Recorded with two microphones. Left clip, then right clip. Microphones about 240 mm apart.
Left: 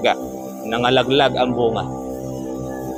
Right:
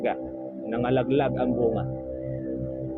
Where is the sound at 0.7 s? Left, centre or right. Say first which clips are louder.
Left 8 dB; left.